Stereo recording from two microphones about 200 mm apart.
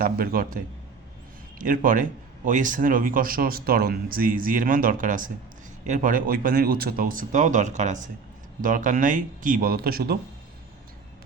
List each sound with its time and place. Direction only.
0.0 s speech: 45° right (ahead or behind)